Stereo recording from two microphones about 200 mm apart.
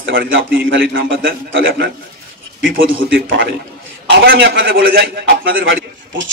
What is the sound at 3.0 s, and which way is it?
Speech, 60° right (ahead or behind).